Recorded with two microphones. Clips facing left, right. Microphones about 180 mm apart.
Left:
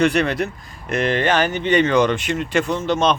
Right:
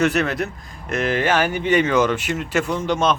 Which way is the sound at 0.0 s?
Centre (ahead or behind).